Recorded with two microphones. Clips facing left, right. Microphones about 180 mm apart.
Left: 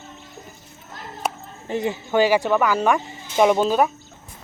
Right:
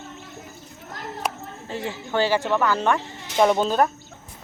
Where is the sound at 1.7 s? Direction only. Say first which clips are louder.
Left 6 dB; 20° left (ahead or behind).